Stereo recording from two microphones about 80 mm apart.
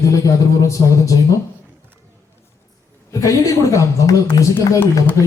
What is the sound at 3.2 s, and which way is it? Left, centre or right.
Speech, left.